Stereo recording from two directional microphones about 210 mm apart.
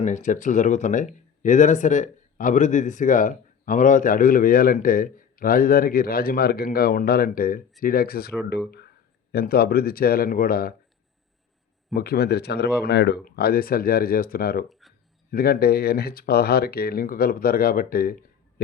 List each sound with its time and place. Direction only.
0.0 s speech: 35° left (ahead or behind)
11.9 s speech: 50° left (ahead or behind)
14.7 s a sound: centre (ahead or behind)
15.3 s speech: 45° left (ahead or behind)